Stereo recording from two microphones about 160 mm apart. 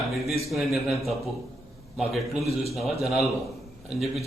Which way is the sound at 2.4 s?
40° right (ahead or behind).